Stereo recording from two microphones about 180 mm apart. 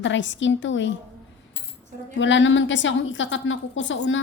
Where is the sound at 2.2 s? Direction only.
90° left.